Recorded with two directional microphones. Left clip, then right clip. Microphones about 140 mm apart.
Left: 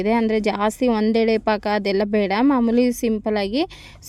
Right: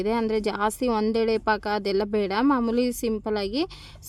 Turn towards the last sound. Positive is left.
turn(degrees=25)  # may be behind; listen again after turning